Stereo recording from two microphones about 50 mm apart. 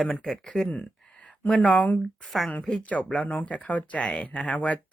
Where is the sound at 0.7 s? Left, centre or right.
Left.